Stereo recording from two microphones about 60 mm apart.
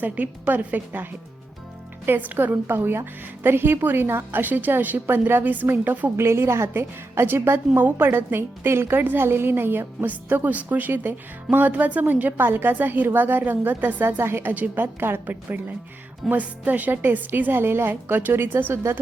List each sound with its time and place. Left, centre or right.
0.0 s a woman's voice: right
2.0 s a woman's voice: right
6.1 s a woman's voice: right